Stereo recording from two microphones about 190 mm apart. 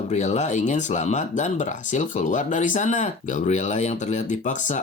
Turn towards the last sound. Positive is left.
turn(degrees=35)  # may be behind; listen again after turning